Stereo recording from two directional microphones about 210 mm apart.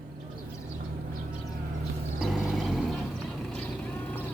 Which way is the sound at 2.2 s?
Centre (ahead or behind).